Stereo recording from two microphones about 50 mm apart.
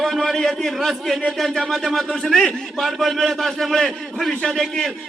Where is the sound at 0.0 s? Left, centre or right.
Centre.